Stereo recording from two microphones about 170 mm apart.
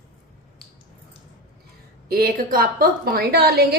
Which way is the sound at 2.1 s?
60° right (ahead or behind).